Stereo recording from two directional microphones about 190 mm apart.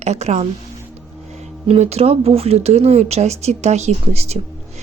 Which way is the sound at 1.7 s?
35° right (ahead or behind).